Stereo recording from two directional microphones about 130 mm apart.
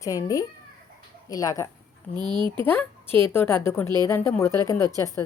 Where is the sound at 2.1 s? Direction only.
35° right (ahead or behind).